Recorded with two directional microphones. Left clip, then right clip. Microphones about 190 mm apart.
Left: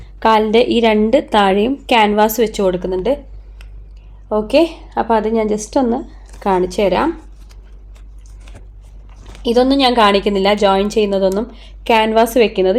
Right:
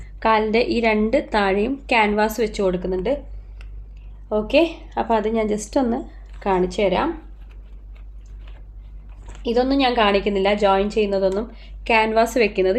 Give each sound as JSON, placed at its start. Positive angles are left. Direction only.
{"t": 0.2, "sound": "a woman's voice", "side_deg": 35}
{"t": 4.3, "sound": "a woman's voice", "side_deg": 40}
{"t": 6.4, "sound": "a woman's voice", "side_deg": 40}
{"t": 9.4, "sound": "a woman's voice", "side_deg": 40}